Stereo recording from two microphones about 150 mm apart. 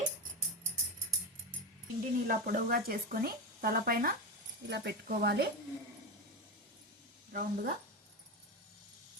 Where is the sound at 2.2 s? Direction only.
70° right (ahead or behind).